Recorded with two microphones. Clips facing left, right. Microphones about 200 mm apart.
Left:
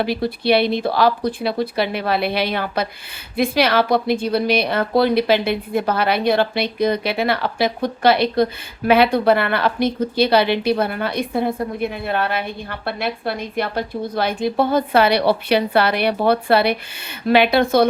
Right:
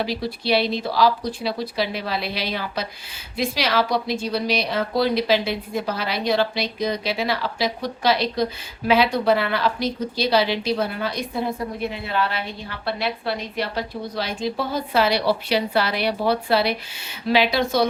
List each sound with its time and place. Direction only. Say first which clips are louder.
0.0 s a woman's voice: left 5 dB; 55° left (ahead or behind)